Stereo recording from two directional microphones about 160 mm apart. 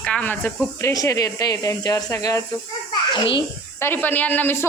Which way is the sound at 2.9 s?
30° left (ahead or behind).